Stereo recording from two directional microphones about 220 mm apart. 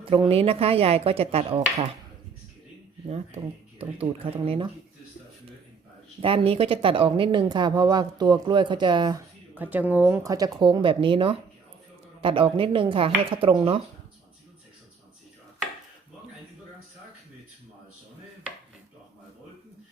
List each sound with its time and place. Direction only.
0.0 s speech: 25° right (ahead or behind)
3.1 s speech: 30° right (ahead or behind)
6.1 s speech: 25° right (ahead or behind)
9.6 s speech: 10° right (ahead or behind); by 13.8 s 25° right (ahead or behind)